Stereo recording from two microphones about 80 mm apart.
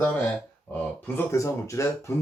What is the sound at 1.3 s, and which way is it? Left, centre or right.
Speech, left.